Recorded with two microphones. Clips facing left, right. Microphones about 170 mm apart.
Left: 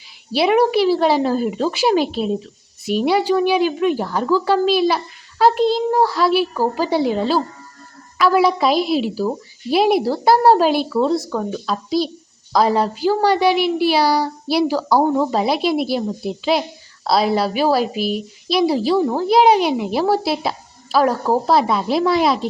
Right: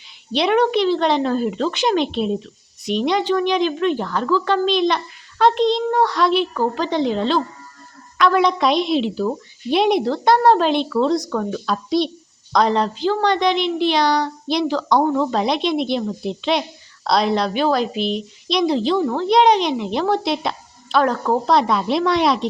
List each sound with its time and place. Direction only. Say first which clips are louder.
0.3 s a woman's voice: left 2 dB; 5° left (ahead or behind)
15.3 s a woman's voice: left 1 dB; 5° left (ahead or behind)